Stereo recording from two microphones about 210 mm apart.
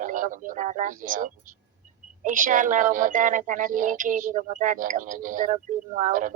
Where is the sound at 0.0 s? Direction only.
40° right (ahead or behind).